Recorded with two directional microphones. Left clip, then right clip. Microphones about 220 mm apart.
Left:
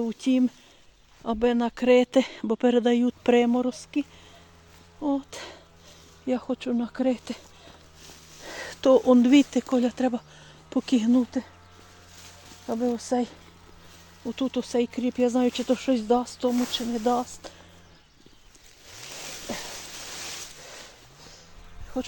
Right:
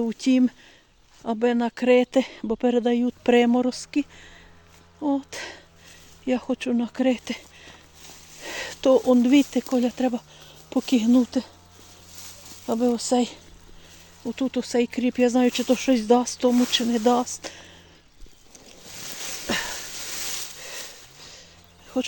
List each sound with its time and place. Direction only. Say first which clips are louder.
0.0 s speech: right 3 dB; 20° right (ahead or behind); by 3.3 s centre (ahead or behind)
3.3 s speech: right 4 dB; 20° right (ahead or behind)
6.2 s a sound: right 3 dB; 15° right (ahead or behind)
8.8 s speech: even; centre (ahead or behind)
11.2 s speech: right 4 dB; 20° right (ahead or behind)
12.6 s speech: right 4 dB; 25° right (ahead or behind)
22.0 s speech: right 5 dB; 30° right (ahead or behind)